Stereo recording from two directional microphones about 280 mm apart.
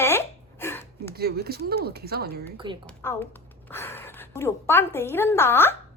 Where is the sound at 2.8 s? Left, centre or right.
Centre.